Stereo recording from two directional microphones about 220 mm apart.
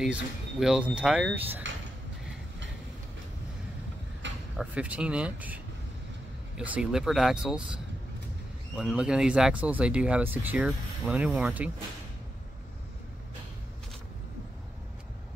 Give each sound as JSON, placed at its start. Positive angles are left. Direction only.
{"t": 0.0, "sound": "speech", "side_deg": 0}
{"t": 4.2, "sound": "mechanisms", "side_deg": -55}
{"t": 4.6, "sound": "speech", "side_deg": -5}